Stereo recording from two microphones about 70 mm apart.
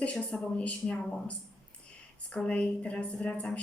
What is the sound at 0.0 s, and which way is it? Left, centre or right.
A woman's voice, centre.